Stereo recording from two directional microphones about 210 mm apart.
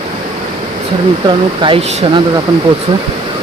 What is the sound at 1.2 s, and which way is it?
Speech, 25° right (ahead or behind).